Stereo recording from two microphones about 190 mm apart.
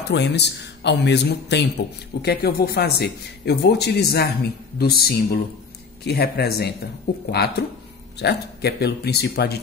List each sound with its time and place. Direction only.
0.1 s speech: 65° left (ahead or behind)